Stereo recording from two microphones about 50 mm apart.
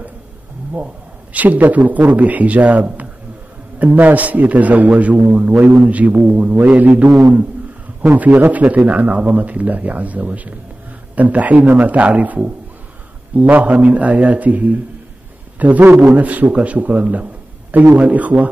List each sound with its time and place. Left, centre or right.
1.3 s a man's voice: right
8.5 s a man's voice: right